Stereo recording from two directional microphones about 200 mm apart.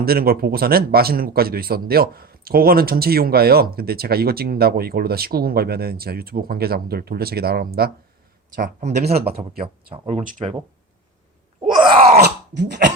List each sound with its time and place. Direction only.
0.0 s a man's voice: 50° right (ahead or behind)
8.5 s speech: 40° right (ahead or behind)
9.1 s a man's voice: 50° right (ahead or behind)
9.9 s speech: 35° right (ahead or behind)
12.1 s a sound: 55° right (ahead or behind)